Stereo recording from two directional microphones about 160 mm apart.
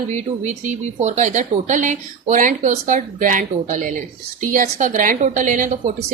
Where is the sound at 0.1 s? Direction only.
45° right (ahead or behind).